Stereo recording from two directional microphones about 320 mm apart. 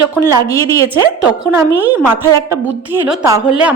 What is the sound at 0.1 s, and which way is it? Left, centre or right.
Speech, centre.